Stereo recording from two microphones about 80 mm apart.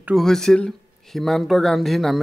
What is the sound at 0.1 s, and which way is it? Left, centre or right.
Speech, centre.